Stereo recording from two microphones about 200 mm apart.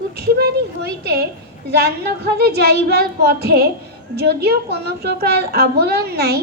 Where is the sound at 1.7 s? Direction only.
55° right (ahead or behind).